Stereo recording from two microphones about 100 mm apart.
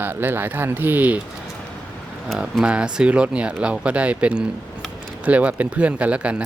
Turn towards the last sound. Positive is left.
turn(degrees=-10)  # may be behind; listen again after turning